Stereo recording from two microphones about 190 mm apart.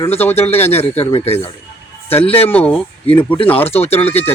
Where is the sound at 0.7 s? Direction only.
30° left (ahead or behind).